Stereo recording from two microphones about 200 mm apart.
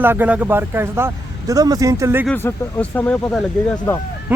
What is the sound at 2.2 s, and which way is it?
Speech, 10° left (ahead or behind).